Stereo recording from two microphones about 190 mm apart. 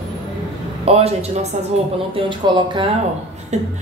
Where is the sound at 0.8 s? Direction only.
35° right (ahead or behind).